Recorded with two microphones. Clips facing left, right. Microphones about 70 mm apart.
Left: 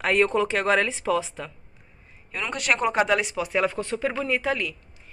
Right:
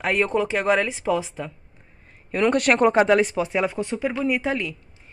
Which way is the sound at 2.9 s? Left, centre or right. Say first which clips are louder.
Right 5 dB; right.